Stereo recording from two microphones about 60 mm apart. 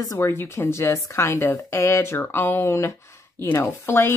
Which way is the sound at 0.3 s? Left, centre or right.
Left.